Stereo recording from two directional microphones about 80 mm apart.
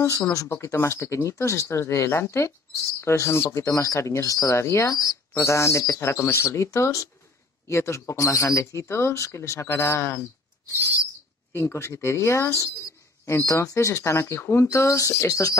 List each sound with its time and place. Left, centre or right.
0.3 s speech: left
11.5 s speech: left